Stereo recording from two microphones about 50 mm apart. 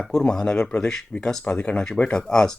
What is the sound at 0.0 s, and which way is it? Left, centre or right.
Speech, centre.